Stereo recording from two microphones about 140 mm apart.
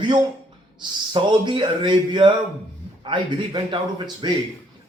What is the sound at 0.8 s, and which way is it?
Speech, 35° right (ahead or behind).